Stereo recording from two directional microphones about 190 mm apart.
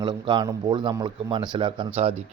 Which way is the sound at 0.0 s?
25° right (ahead or behind).